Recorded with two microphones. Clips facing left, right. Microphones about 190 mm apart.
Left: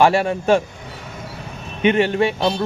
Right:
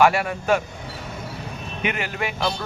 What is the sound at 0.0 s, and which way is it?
Speech, 30° left (ahead or behind).